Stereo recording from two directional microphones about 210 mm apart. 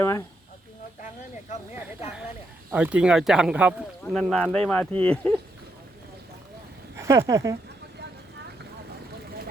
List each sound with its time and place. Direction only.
2.7 s speech: 5° right (ahead or behind)
6.9 s speech: 15° right (ahead or behind)